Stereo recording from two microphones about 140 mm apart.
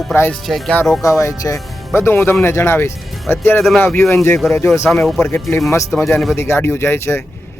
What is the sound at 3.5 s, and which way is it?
Speech, 5° left (ahead or behind).